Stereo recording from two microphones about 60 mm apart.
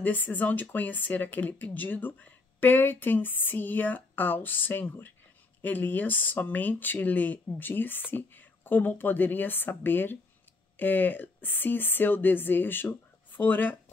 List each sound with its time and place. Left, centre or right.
0.0 s speech: left